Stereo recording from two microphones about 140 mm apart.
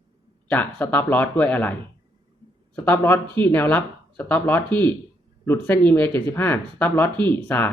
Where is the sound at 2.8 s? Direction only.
15° left (ahead or behind).